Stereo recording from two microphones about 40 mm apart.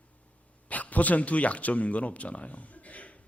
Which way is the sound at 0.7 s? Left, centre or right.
Left.